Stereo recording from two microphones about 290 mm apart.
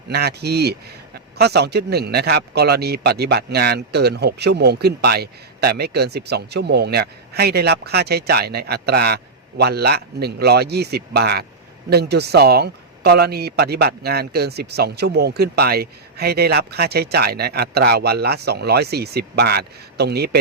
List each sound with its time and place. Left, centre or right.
0.1 s a man's voice: right